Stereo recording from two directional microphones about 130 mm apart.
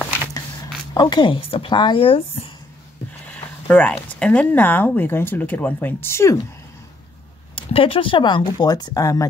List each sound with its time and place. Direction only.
0.9 s speech: 35° left (ahead or behind)
3.3 s a sound: 10° left (ahead or behind)
4.1 s speech: 10° left (ahead or behind)
7.5 s speech: 45° left (ahead or behind); by 9.2 s 30° left (ahead or behind)